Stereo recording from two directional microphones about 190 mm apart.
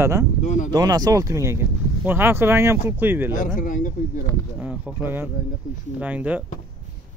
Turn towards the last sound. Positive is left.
turn(degrees=-5)  # may be behind; listen again after turning